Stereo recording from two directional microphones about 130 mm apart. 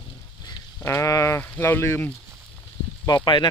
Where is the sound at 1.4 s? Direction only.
15° left (ahead or behind).